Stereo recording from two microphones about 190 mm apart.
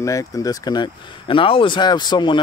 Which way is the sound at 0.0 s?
15° left (ahead or behind).